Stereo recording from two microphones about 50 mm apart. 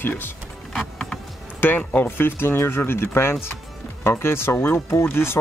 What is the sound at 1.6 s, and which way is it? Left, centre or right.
Speech, left.